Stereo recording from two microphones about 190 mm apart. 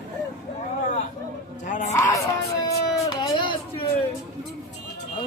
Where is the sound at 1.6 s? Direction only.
40° left (ahead or behind).